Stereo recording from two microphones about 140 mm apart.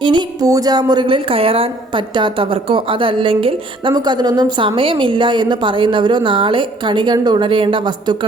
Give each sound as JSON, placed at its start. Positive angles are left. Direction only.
{"t": 0.0, "sound": "a woman's voice", "side_deg": -35}